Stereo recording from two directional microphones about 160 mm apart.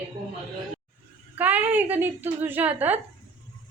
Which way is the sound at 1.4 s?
10° right (ahead or behind).